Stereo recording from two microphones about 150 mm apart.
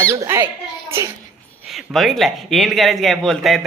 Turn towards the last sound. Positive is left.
turn(degrees=0)  # may be behind; listen again after turning